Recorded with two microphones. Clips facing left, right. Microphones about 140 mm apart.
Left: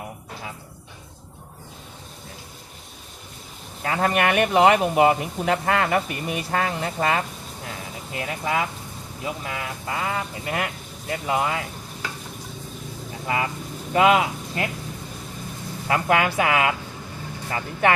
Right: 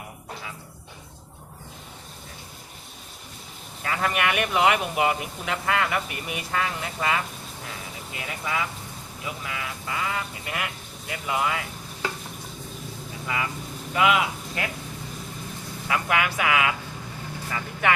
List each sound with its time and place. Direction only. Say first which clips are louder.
3.8 s speech: left 4 dB; 35° left (ahead or behind)
13.2 s speech: left 4 dB; 35° left (ahead or behind)
15.9 s speech: left 4 dB; 35° left (ahead or behind)